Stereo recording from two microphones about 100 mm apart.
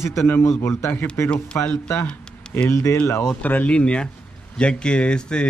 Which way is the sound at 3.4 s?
15° left (ahead or behind).